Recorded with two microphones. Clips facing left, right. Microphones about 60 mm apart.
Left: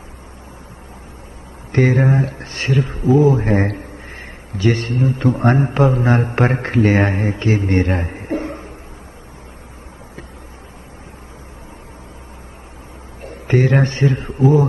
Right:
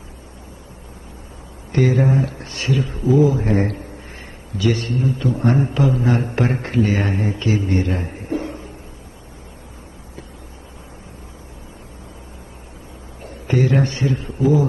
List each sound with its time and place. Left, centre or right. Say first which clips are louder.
1.7 s a man's voice: left 2 dB; left
13.2 s a man's voice: left 3 dB; left